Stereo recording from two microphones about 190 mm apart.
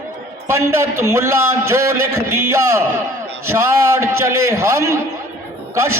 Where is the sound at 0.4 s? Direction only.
15° right (ahead or behind).